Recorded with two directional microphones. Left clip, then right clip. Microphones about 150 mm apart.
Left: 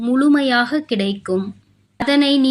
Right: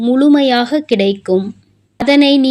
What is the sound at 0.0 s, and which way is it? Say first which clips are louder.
Speech: right 5 dB; 20° right (ahead or behind).